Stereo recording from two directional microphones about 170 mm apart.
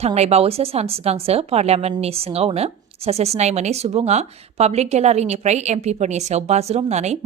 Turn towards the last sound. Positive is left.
turn(degrees=-40)  # may be behind; listen again after turning